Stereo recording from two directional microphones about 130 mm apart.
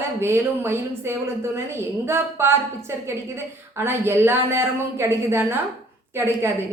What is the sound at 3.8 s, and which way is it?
Speech, 20° right (ahead or behind).